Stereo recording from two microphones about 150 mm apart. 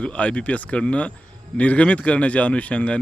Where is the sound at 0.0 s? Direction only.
10° left (ahead or behind).